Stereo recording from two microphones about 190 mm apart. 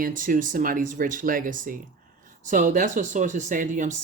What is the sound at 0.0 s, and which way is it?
Speech, 45° right (ahead or behind).